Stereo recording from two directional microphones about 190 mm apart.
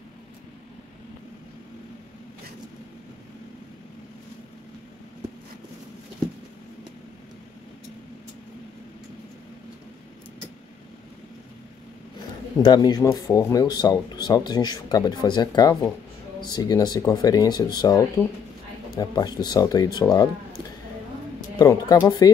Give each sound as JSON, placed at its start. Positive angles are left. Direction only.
{"t": 12.6, "sound": "speech", "side_deg": 20}
{"t": 21.5, "sound": "speech", "side_deg": 20}